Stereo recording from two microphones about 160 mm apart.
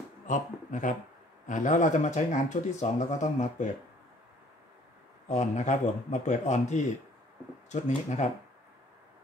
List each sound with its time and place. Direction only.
0.3 s speech: 55° left (ahead or behind)
5.3 s speech: 50° left (ahead or behind)